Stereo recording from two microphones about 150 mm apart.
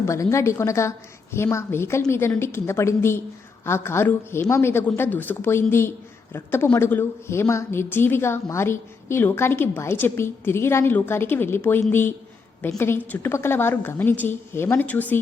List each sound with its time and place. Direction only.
0.0 s a woman's voice: 20° left (ahead or behind)